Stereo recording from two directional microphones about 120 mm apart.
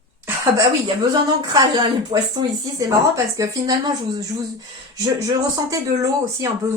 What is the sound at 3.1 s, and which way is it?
A woman's voice, 30° right (ahead or behind).